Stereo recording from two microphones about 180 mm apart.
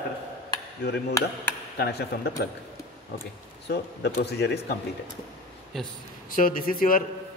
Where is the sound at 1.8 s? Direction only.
65° left (ahead or behind).